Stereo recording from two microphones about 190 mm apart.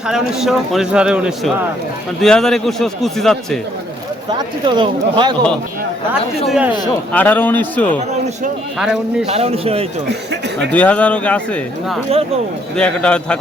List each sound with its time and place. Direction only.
0.1 s a man's voice: centre (ahead or behind)
4.3 s speech: 25° right (ahead or behind)
6.5 s speech: 5° right (ahead or behind)
7.1 s speech: 10° left (ahead or behind)
8.8 s a man's voice: 5° right (ahead or behind)
9.2 s speech: 35° right (ahead or behind)
10.7 s a man's voice: 10° left (ahead or behind)